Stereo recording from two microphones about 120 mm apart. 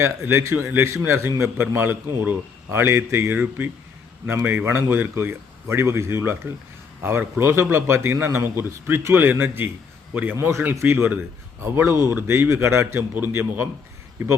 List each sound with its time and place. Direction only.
0.0 s a man's voice: 20° right (ahead or behind)